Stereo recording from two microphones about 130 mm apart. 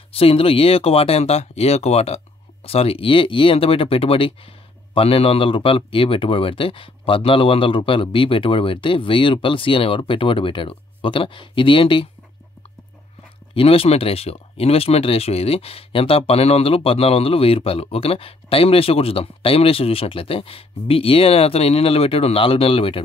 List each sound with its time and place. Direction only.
0.1 s speech: 45° left (ahead or behind)
13.6 s speech: 45° left (ahead or behind)